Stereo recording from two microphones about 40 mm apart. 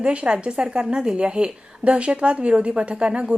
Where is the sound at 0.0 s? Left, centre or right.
Right.